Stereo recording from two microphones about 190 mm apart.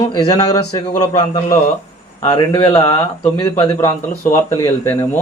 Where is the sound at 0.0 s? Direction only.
20° left (ahead or behind).